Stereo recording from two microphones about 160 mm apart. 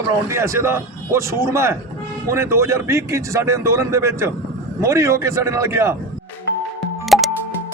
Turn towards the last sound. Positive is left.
turn(degrees=0)  # may be behind; listen again after turning